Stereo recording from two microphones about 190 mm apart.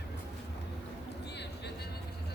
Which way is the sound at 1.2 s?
65° left (ahead or behind).